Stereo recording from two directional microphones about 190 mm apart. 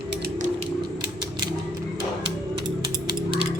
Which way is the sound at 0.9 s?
20° right (ahead or behind).